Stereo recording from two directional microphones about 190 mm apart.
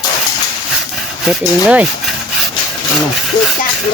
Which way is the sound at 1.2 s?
5° right (ahead or behind).